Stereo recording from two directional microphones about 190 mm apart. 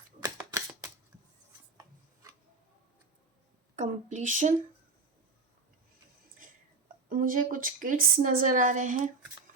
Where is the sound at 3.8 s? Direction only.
40° right (ahead or behind).